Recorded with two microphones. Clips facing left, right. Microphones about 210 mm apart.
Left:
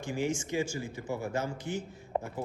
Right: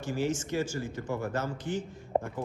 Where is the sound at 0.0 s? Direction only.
10° left (ahead or behind).